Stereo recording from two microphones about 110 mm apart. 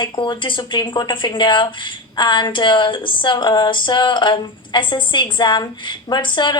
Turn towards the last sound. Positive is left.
turn(degrees=45)  # may be behind; listen again after turning